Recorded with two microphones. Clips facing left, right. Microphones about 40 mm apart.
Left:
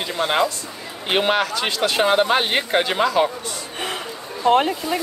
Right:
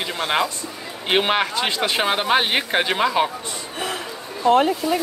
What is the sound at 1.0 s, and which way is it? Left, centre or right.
Speech, centre.